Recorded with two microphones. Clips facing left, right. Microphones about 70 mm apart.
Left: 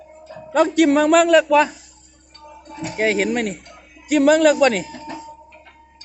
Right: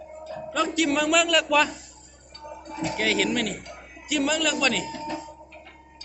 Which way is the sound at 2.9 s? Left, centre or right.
Left.